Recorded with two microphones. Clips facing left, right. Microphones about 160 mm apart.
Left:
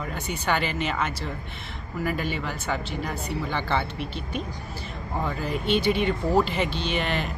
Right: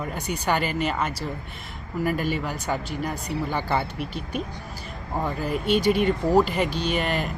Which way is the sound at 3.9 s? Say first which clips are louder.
Right 1 dB; 40° right (ahead or behind).